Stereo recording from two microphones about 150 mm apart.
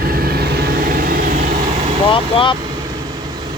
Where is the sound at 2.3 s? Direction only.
35° left (ahead or behind).